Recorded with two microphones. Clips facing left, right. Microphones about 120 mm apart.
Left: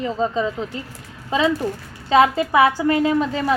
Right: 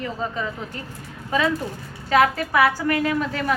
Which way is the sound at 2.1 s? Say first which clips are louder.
Left 3 dB; 20° left (ahead or behind).